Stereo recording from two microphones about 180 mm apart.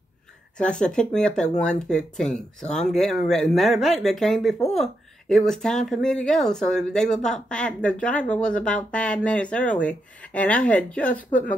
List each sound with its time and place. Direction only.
0.6 s speech: 5° left (ahead or behind)